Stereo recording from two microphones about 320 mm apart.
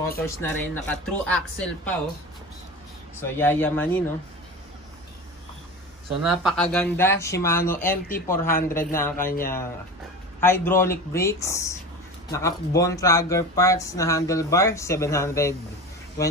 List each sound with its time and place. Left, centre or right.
0.4 s speech: centre
3.2 s speech: centre
6.2 s speech: centre
9.1 s speech: left
10.4 s speech: centre